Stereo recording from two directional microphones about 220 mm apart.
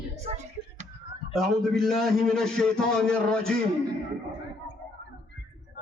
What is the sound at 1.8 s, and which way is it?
Speech, centre (ahead or behind).